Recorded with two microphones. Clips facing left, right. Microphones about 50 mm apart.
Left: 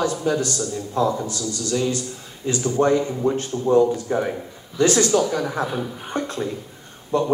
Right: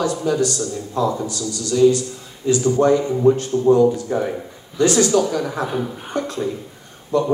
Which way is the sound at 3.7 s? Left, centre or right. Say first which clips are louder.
Left 3 dB; left.